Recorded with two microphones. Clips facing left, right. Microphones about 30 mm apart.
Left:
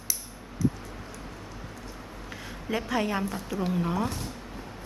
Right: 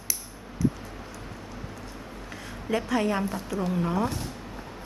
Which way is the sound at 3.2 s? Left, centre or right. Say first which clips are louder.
Right 1 dB; centre.